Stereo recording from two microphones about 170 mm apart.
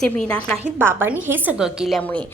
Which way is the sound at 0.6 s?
10° right (ahead or behind).